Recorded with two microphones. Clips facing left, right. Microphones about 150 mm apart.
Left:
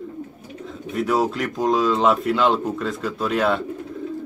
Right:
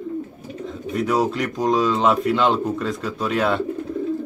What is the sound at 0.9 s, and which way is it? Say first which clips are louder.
A man's voice: even; centre (ahead or behind).